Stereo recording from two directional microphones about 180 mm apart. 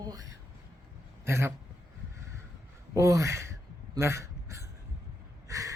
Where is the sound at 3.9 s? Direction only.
15° right (ahead or behind).